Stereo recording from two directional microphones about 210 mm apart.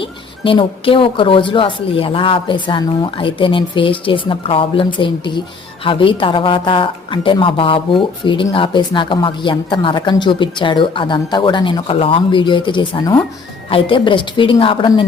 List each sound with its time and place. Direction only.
0.0 s a woman's voice: 25° left (ahead or behind)